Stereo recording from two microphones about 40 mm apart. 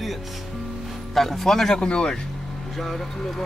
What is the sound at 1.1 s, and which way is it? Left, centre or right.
Speech, centre.